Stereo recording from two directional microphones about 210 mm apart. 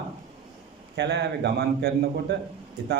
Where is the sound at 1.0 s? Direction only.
55° right (ahead or behind).